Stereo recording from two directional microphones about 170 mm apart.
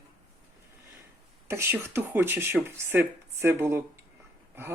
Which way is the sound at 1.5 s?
15° right (ahead or behind).